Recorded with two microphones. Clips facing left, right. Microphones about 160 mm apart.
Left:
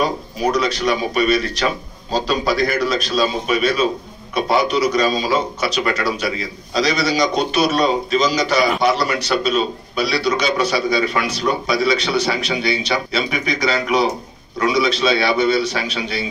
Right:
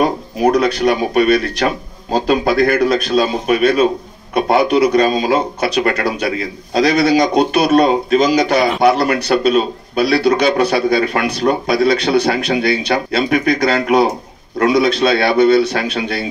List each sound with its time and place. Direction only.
0.0 s a man's voice: 55° right (ahead or behind)